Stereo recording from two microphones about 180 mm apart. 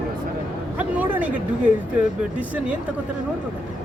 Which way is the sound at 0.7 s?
10° right (ahead or behind).